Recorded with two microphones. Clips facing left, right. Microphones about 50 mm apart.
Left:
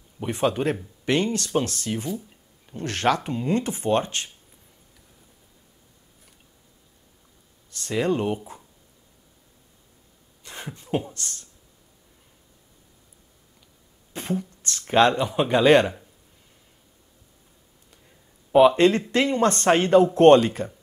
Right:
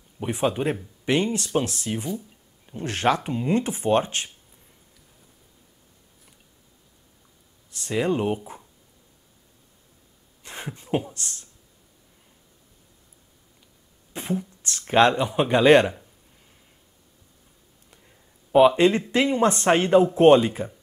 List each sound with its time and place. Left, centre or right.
0.2 s speech: centre
7.7 s speech: centre
10.4 s a sound: right
10.9 s beatboxing: centre
11.1 s speech: centre
14.1 s beatboxing: centre
14.9 s speech: centre
18.0 s speech: centre